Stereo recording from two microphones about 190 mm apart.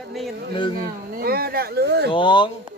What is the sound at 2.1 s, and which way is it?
Speech, 25° left (ahead or behind).